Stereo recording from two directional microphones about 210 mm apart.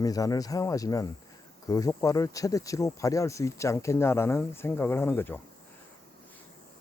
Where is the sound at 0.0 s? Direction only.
15° left (ahead or behind).